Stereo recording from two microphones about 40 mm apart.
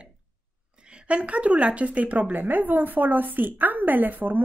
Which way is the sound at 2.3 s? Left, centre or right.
Right.